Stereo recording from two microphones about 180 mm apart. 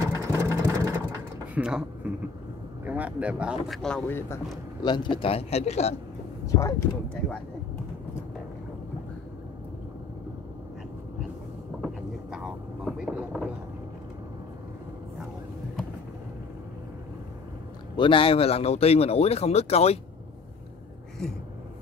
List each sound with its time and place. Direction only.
0.0 s sewing machine: 15° right (ahead or behind)
1.5 s speech: 5° right (ahead or behind)
4.8 s speech: 25° left (ahead or behind)
6.4 s speech: 15° left (ahead or behind)
11.8 s vehicle: centre (ahead or behind)
17.9 s speech: 30° left (ahead or behind)